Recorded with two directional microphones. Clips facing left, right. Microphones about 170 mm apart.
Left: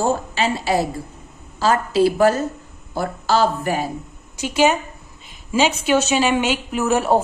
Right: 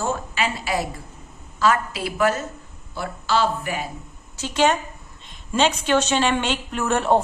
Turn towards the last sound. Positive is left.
turn(degrees=5)  # may be behind; listen again after turning